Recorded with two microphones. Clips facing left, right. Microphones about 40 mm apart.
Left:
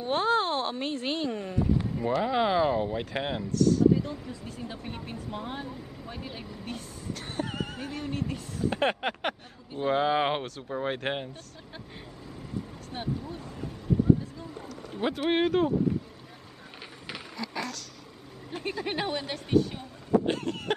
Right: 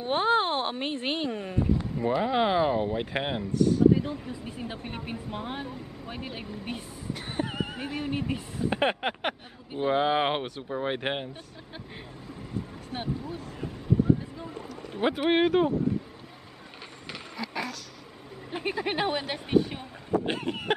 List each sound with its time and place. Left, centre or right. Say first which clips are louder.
0.0 s speech: right 1 dB; right
2.0 s speech: right 2 dB; centre
12.9 s speech: right 2 dB; right
14.7 s speech: right 3 dB; centre
17.4 s a sound: right 1 dB; centre
18.5 s speech: right 3 dB; centre